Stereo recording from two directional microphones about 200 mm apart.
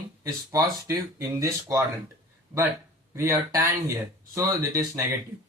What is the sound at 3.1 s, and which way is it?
Speech, 15° right (ahead or behind).